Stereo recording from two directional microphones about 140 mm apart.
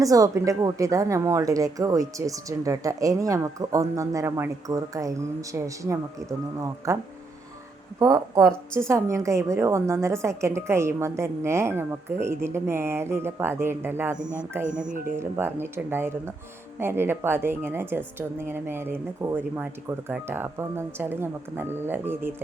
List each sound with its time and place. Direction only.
0.0 s a woman's voice: 25° right (ahead or behind)
14.2 s speech: 65° right (ahead or behind)
15.1 s a woman's voice: 15° right (ahead or behind)